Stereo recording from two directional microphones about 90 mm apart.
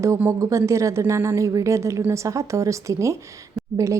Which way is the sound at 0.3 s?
35° right (ahead or behind).